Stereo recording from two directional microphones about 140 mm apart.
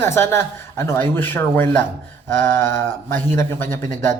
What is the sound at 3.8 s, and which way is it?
Speech, 65° right (ahead or behind).